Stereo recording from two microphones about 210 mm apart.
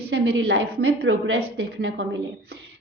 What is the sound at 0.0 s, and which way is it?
A woman's voice, 50° right (ahead or behind).